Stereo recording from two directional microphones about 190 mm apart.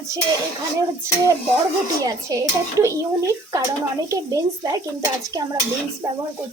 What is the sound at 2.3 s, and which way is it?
Speech, 20° right (ahead or behind).